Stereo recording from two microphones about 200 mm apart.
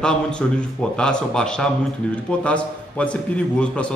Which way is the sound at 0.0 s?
5° left (ahead or behind).